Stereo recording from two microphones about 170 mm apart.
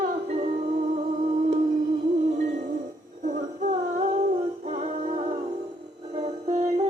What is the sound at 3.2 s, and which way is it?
Music, 50° right (ahead or behind).